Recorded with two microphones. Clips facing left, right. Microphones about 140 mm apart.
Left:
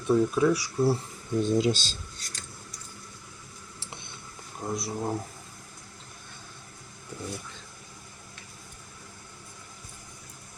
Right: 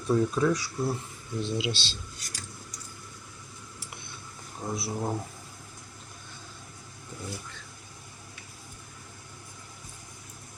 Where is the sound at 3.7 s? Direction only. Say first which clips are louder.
Left 1 dB; 25° left (ahead or behind).